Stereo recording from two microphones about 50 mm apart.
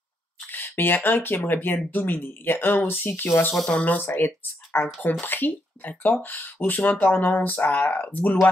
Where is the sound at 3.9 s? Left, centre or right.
Left.